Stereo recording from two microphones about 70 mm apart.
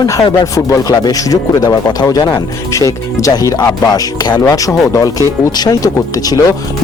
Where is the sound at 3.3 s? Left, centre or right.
Left.